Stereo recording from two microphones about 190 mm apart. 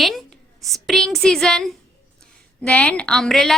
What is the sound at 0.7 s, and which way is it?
A woman's voice, centre (ahead or behind).